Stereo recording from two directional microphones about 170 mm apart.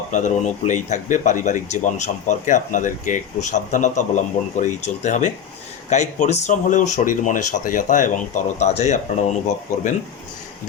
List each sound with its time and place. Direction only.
0.1 s speech: 45° left (ahead or behind)